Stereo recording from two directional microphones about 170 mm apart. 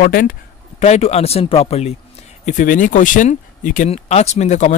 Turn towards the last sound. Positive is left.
turn(degrees=45)  # may be behind; listen again after turning